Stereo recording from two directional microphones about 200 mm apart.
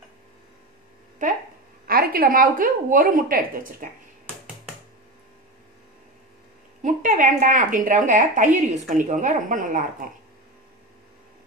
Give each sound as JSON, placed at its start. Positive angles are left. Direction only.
{"t": 1.2, "sound": "a sound", "side_deg": -40}
{"t": 1.9, "sound": "a woman's voice", "side_deg": -45}
{"t": 6.8, "sound": "a woman's voice", "side_deg": -40}